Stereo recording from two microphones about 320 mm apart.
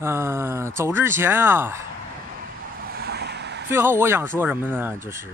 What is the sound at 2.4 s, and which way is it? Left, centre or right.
Vehicle, right.